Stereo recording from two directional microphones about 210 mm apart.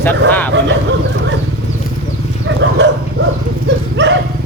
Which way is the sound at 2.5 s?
55° right (ahead or behind).